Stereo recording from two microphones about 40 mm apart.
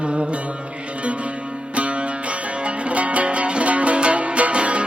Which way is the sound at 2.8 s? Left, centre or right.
Right.